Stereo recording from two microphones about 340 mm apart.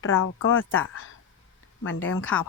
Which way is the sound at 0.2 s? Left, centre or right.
Left.